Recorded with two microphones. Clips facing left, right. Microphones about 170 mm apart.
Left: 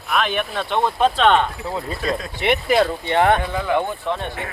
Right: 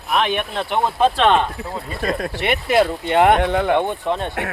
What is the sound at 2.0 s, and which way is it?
Speech, 55° right (ahead or behind).